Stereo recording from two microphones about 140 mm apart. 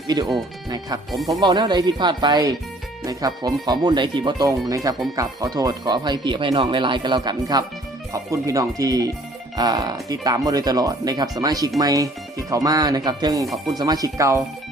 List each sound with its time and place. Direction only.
0.1 s speech: 30° right (ahead or behind)
1.1 s speech: centre (ahead or behind)
1.4 s speech: 30° right (ahead or behind)